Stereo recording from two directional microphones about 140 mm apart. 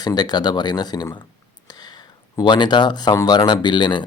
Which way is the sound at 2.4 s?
30° left (ahead or behind).